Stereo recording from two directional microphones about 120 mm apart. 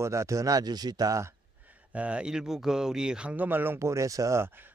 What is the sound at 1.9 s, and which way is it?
Speech, 10° right (ahead or behind).